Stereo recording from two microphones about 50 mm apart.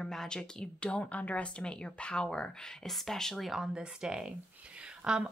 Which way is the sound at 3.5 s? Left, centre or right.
Centre.